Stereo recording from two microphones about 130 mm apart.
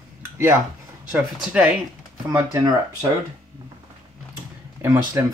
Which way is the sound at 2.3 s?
15° right (ahead or behind).